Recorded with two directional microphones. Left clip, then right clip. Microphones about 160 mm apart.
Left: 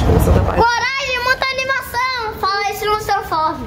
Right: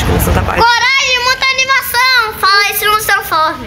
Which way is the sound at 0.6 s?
45° left (ahead or behind).